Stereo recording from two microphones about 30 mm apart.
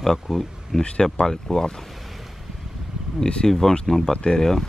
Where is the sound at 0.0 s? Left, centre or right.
Centre.